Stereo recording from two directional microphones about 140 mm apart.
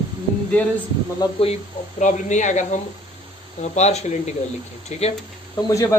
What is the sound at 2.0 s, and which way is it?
Speech, 60° left (ahead or behind).